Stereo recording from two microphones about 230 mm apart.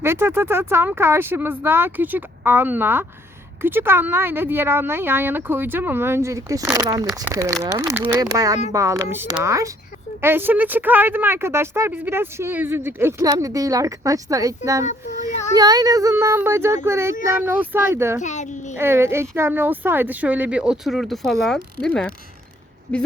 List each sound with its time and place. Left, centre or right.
0.0 s a woman's voice: centre
14.8 s a child's voice: left
15.5 s a woman's voice: centre
18.2 s a child's voice: left
18.8 s a woman's voice: centre